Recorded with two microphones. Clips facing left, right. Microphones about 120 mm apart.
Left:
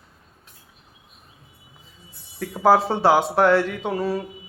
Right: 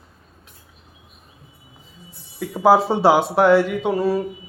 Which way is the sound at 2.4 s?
5° right (ahead or behind).